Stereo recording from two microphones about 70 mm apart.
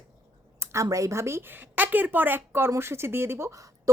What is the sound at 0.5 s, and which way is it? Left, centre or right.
A woman's voice, right.